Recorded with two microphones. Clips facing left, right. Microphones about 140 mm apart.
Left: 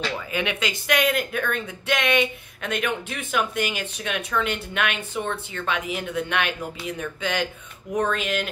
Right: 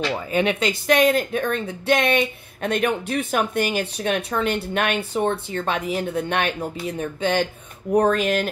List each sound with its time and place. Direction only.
0.3 s speech: 35° right (ahead or behind)